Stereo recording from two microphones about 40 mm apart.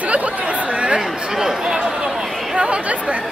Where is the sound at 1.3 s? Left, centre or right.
Centre.